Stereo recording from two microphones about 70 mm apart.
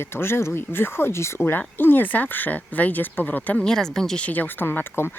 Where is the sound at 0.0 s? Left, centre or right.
Left.